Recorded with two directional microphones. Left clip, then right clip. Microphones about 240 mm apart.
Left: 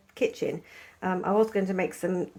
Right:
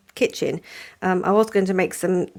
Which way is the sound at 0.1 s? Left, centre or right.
Right.